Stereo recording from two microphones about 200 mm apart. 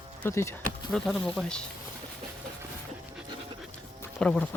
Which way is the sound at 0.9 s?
Centre (ahead or behind).